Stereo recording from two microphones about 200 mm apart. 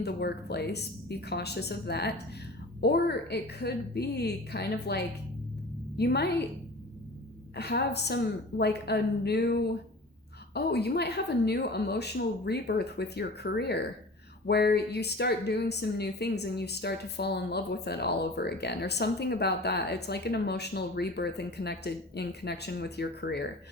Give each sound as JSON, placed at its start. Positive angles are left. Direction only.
{"t": 0.0, "sound": "speech", "side_deg": 55}
{"t": 7.5, "sound": "speech", "side_deg": 55}